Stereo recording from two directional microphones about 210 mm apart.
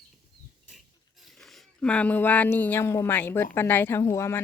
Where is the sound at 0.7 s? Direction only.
Centre (ahead or behind).